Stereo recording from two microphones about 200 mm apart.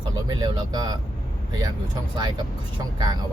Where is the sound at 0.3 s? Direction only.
20° right (ahead or behind).